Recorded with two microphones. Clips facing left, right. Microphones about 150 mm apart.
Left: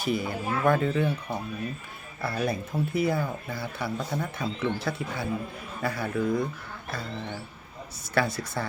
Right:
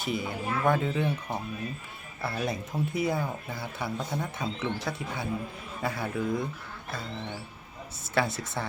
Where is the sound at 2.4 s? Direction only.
20° right (ahead or behind).